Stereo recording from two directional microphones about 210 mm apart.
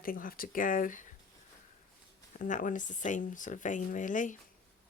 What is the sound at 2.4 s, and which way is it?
Speech, 40° left (ahead or behind).